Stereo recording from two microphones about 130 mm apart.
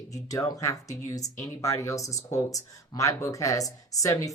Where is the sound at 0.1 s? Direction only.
25° left (ahead or behind).